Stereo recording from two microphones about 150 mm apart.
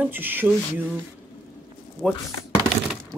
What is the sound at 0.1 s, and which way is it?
Speech, 15° right (ahead or behind).